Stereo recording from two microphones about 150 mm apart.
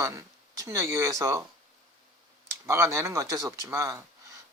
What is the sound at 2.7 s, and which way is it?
Speech, 20° right (ahead or behind).